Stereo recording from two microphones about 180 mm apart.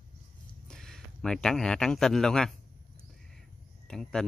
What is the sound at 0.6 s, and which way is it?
Speech, 5° left (ahead or behind).